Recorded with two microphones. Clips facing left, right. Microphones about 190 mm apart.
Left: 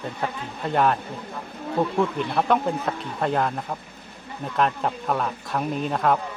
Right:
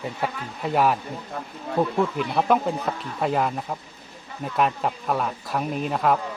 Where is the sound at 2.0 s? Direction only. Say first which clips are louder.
Even; 5° right (ahead or behind).